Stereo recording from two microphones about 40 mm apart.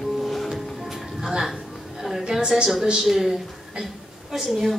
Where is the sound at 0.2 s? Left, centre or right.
Centre.